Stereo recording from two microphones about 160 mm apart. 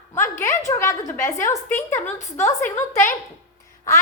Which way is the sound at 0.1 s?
15° left (ahead or behind).